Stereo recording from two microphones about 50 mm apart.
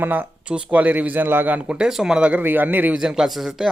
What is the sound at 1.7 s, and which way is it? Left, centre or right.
Speech, centre.